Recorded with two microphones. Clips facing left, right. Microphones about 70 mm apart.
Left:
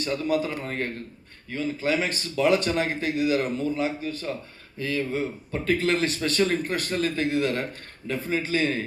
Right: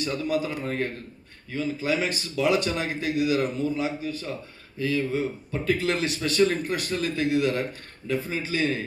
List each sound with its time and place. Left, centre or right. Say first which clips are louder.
0.0 s a man's voice: left 1 dB; left